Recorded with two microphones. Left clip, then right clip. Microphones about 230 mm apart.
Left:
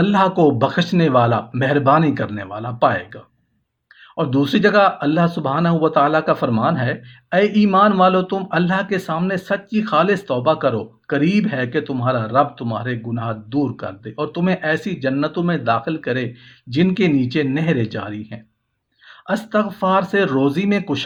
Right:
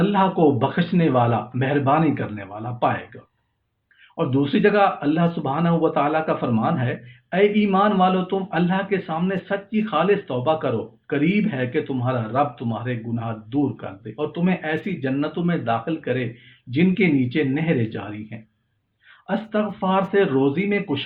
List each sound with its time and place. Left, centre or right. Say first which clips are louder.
0.0 s speech: left 3 dB; left
4.2 s speech: left 3 dB; left